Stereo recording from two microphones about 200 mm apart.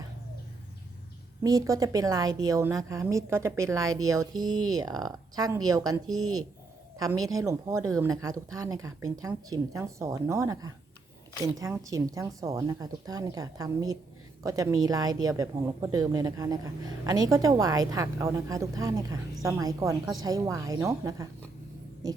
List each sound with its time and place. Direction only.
1.5 s speech: 20° right (ahead or behind)